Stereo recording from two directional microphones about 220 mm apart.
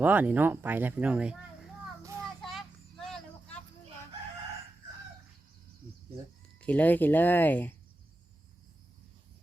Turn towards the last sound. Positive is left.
turn(degrees=10)  # may be behind; listen again after turning